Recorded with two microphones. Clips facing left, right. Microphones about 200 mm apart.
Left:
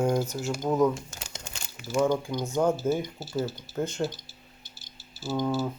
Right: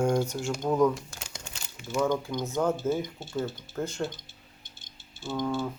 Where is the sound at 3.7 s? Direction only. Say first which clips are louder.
Left 4 dB; 20° left (ahead or behind).